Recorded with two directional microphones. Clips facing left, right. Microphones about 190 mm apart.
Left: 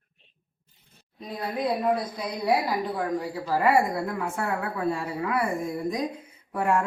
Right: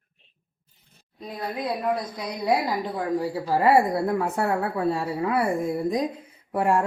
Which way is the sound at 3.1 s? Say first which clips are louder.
Right 3 dB; 30° right (ahead or behind).